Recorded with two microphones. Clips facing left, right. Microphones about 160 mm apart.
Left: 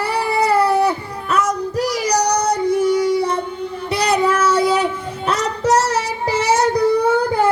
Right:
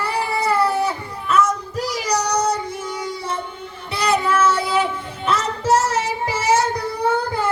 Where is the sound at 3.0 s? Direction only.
35° left (ahead or behind).